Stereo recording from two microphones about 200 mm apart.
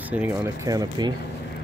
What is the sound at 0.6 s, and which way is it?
Speech, 20° right (ahead or behind).